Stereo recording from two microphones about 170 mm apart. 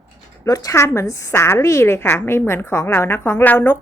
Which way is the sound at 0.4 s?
20° left (ahead or behind).